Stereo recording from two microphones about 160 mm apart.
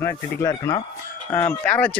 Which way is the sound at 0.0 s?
20° left (ahead or behind).